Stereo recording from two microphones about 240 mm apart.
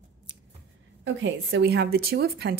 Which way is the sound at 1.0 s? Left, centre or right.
Right.